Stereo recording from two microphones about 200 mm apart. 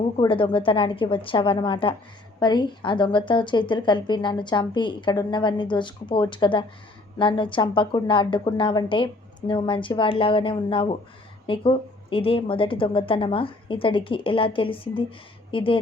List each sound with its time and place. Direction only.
0.2 s a woman's voice: 25° left (ahead or behind)